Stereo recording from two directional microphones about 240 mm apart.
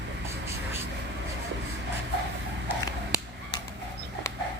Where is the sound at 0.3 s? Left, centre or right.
Centre.